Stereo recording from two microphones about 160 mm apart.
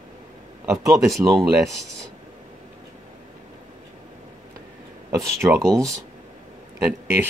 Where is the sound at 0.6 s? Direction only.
20° right (ahead or behind).